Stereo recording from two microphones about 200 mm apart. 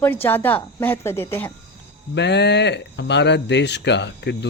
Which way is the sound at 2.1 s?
60° left (ahead or behind).